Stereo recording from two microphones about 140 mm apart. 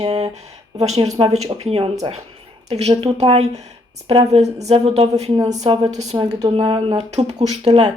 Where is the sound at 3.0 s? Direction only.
45° right (ahead or behind).